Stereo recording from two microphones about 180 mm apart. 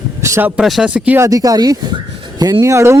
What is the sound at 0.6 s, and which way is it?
Speech, centre (ahead or behind).